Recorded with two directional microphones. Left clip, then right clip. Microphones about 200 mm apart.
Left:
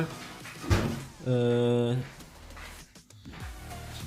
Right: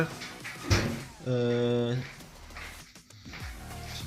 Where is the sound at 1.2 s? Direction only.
15° left (ahead or behind).